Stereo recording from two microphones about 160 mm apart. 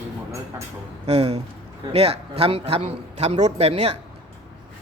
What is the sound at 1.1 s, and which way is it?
Speech, 40° right (ahead or behind).